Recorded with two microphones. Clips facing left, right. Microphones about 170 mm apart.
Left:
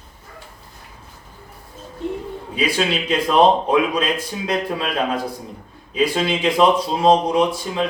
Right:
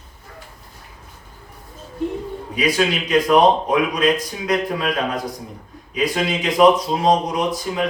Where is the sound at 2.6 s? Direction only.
30° left (ahead or behind).